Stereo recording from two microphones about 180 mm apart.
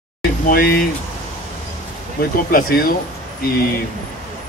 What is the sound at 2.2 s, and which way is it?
Speech, 50° left (ahead or behind).